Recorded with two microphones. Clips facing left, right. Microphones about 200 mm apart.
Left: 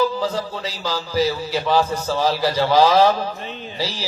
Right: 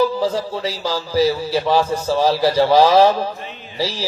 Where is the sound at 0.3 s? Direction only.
30° right (ahead or behind).